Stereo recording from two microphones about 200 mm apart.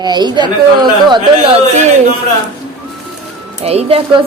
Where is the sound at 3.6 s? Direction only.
30° right (ahead or behind).